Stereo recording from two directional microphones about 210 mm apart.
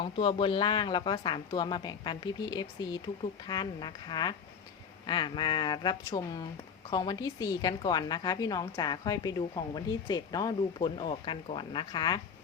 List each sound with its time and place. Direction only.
0.0 s a woman's voice: 25° left (ahead or behind)